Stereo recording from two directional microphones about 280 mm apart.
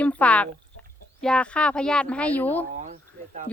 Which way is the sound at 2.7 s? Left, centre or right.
Right.